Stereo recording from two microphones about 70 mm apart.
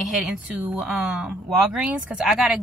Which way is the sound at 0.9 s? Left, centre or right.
Centre.